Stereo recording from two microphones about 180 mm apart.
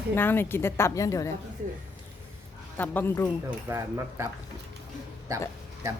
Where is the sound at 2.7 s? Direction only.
10° left (ahead or behind).